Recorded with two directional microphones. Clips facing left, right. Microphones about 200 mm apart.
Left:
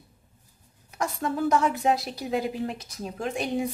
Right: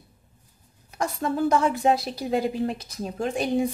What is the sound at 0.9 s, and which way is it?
A woman's voice, 30° right (ahead or behind).